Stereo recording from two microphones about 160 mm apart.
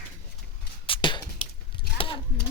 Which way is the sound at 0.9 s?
30° left (ahead or behind).